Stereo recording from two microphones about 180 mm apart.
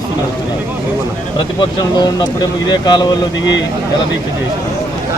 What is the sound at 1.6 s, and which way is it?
Speech, 25° left (ahead or behind).